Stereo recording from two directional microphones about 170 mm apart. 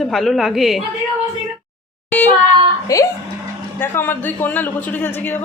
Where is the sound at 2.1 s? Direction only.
10° left (ahead or behind).